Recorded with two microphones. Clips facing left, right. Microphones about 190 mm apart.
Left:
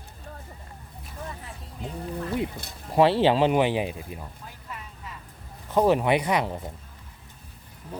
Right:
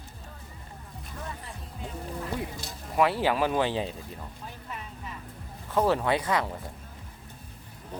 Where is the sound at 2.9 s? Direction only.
30° left (ahead or behind).